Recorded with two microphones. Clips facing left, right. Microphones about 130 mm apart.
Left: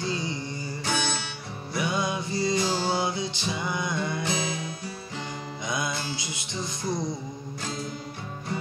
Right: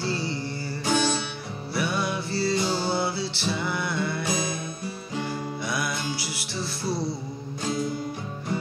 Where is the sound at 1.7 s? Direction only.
20° left (ahead or behind).